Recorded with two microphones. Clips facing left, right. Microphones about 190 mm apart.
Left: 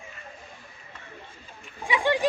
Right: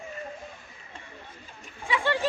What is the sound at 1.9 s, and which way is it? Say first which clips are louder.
Speech: left 3 dB; 15° left (ahead or behind).